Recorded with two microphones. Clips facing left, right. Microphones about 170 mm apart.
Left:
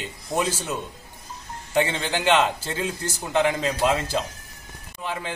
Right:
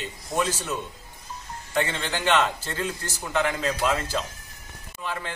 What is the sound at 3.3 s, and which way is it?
Speech, 25° left (ahead or behind).